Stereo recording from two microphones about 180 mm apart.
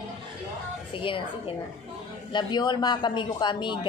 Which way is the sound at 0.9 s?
30° left (ahead or behind).